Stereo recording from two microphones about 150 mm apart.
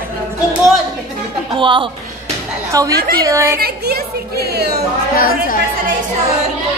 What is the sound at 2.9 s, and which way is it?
Speech, 90° right.